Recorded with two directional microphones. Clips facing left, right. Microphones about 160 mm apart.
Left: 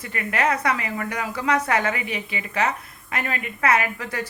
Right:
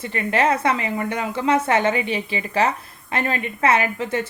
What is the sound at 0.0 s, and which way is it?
A woman's voice, 30° right (ahead or behind).